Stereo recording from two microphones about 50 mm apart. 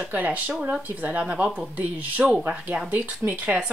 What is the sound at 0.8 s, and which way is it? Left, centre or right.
Speech, right.